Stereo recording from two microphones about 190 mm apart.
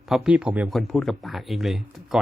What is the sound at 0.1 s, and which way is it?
Speech, 5° right (ahead or behind).